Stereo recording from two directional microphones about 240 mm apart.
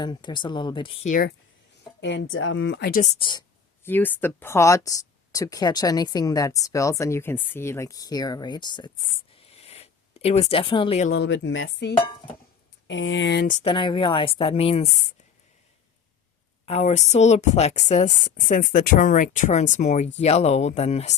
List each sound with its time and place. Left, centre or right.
0.0 s speech: centre
2.0 s a woman's voice: left
3.8 s speech: centre
9.3 s a sound: left
11.1 s a woman's voice: left
16.6 s speech: left